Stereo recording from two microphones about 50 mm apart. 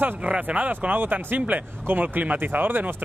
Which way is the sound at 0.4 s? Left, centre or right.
Right.